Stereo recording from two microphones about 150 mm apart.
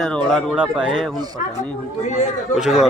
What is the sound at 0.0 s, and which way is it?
Speech, 5° left (ahead or behind).